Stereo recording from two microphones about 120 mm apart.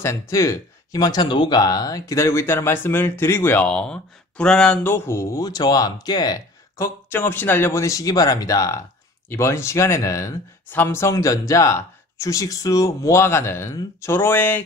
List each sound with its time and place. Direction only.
0.0 s speech: 25° left (ahead or behind); by 4.9 s 5° left (ahead or behind)
4.9 s speech: 20° left (ahead or behind)
7.1 s speech: 15° left (ahead or behind)